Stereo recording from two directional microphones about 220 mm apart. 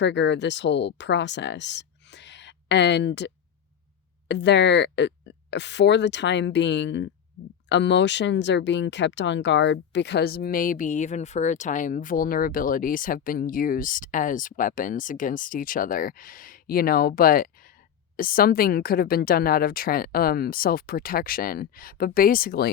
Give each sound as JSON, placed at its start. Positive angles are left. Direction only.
{"t": 0.0, "sound": "speech", "side_deg": 55}